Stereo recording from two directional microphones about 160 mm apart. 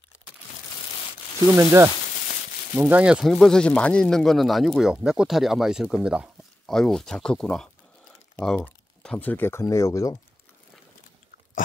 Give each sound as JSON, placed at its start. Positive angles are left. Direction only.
{"t": 1.5, "sound": "speech", "side_deg": -15}